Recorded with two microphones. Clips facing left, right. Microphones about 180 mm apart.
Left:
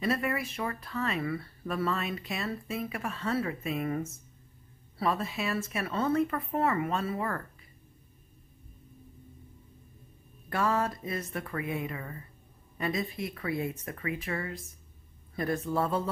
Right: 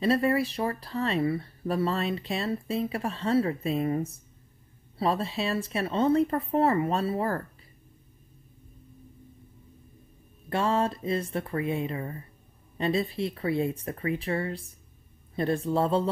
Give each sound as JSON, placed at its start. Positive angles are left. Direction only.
{"t": 0.0, "sound": "speech", "side_deg": -30}
{"t": 10.5, "sound": "speech", "side_deg": -25}